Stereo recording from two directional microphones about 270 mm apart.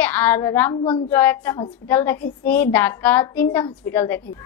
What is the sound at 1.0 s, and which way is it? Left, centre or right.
A woman's voice, centre.